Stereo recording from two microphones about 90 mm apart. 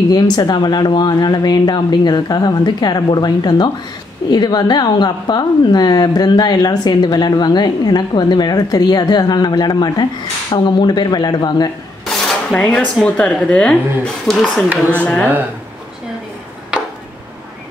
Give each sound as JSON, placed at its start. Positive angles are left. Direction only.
{"t": 0.1, "sound": "a woman's voice", "side_deg": 50}
{"t": 12.3, "sound": "a sound", "side_deg": 10}
{"t": 13.0, "sound": "speech", "side_deg": 10}